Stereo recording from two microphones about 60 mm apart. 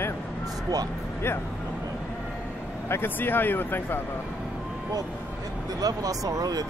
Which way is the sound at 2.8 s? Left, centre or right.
Left.